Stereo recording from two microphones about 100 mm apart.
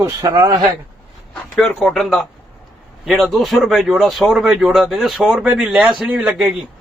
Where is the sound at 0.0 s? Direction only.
35° right (ahead or behind).